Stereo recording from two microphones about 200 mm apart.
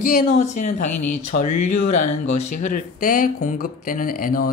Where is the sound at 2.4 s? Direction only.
40° left (ahead or behind).